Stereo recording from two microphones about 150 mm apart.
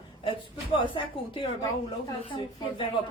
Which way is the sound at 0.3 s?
35° left (ahead or behind).